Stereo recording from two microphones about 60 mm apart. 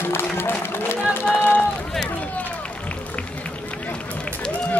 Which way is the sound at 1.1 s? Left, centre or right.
Left.